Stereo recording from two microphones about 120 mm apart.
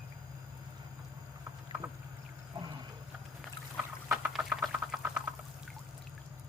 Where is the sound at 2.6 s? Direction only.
35° right (ahead or behind).